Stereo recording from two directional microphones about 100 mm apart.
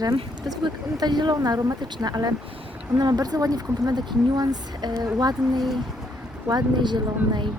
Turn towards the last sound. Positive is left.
turn(degrees=-50)  # may be behind; listen again after turning